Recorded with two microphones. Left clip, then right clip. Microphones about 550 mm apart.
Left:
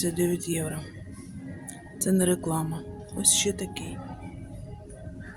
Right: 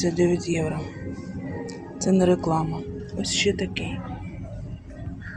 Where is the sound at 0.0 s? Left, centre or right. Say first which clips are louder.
Right 5 dB; left.